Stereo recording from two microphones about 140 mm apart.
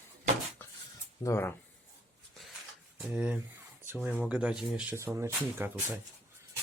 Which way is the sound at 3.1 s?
10° right (ahead or behind).